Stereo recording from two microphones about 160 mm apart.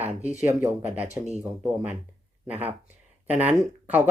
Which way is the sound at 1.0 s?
45° right (ahead or behind).